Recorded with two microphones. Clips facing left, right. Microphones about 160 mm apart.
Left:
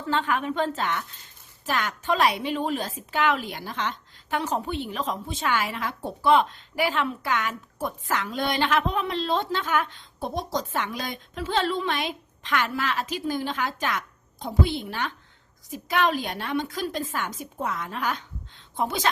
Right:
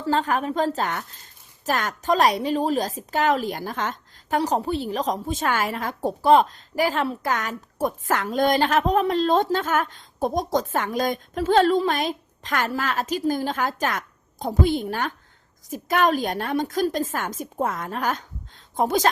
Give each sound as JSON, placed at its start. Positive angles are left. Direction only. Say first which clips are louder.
{"t": 0.0, "sound": "a woman's voice", "louder": "right 3 dB", "side_deg": -40}